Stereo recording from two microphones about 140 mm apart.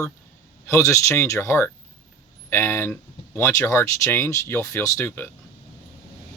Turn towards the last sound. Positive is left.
turn(degrees=15)  # may be behind; listen again after turning